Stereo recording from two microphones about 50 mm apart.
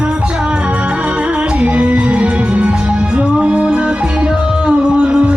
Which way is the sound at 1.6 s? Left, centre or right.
Right.